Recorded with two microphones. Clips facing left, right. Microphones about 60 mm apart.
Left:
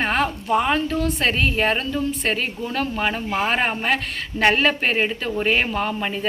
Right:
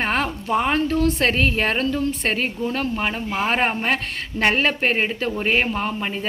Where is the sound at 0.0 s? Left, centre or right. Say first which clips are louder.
Left 1 dB; right.